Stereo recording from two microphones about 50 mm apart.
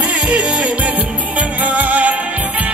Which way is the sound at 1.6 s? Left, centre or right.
Right.